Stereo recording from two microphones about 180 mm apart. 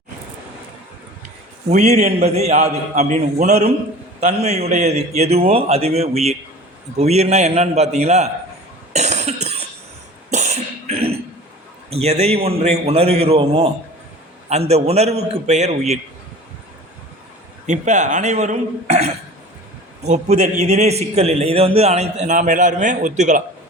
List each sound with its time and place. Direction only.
1.7 s a man's voice: 40° right (ahead or behind)
8.9 s cough: 40° right (ahead or behind)
11.9 s a man's voice: 35° right (ahead or behind)
14.7 s a man's voice: 35° right (ahead or behind)
17.7 s a man's voice: 40° right (ahead or behind)